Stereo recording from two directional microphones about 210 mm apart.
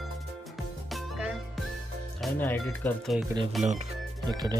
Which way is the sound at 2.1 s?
10° left (ahead or behind).